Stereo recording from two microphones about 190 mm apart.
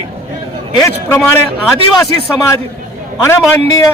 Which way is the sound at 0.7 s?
15° left (ahead or behind).